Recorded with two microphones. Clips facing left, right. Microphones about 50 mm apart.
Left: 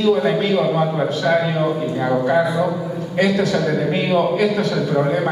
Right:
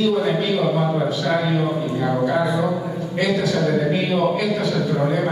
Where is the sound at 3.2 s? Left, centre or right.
Left.